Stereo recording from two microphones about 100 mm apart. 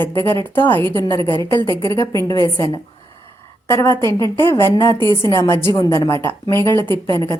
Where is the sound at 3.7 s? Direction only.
25° left (ahead or behind).